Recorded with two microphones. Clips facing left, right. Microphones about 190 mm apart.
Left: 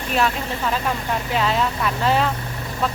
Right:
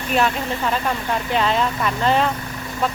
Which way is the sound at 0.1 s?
Centre (ahead or behind).